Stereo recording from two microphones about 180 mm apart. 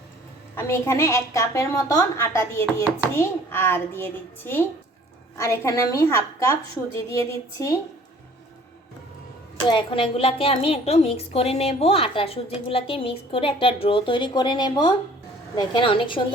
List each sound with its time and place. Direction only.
0.5 s a woman's voice: 15° left (ahead or behind)
9.6 s a woman's voice: 25° left (ahead or behind)